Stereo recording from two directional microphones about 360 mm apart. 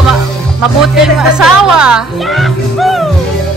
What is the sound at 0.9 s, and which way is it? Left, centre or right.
Speech, centre.